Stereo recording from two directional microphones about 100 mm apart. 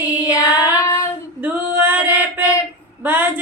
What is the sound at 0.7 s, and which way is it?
Child singing, 30° left (ahead or behind).